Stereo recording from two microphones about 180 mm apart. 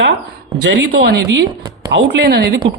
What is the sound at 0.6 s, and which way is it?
Speech, 70° right (ahead or behind).